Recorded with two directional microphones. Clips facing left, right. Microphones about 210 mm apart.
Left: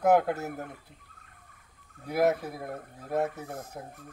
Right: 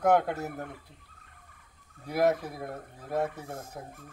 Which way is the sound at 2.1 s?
Centre (ahead or behind).